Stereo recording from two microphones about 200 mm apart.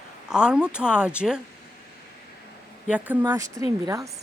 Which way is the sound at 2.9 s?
10° right (ahead or behind).